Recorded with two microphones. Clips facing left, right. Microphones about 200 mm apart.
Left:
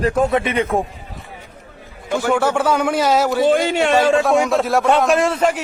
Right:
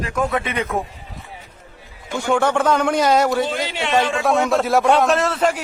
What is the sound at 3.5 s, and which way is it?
Speech, 50° left (ahead or behind).